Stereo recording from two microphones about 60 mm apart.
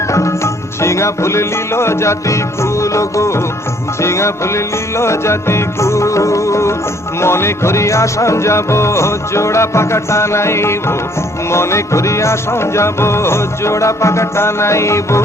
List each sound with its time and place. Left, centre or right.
0.1 s music: left